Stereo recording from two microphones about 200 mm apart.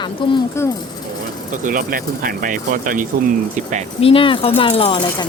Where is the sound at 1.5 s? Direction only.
40° right (ahead or behind).